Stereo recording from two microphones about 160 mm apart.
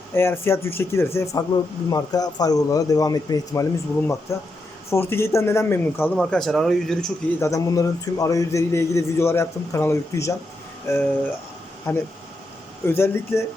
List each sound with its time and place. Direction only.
0.1 s a man's voice: 15° left (ahead or behind)
6.1 s speech: centre (ahead or behind)
7.4 s a man's voice: 20° left (ahead or behind)
12.8 s a man's voice: 15° left (ahead or behind)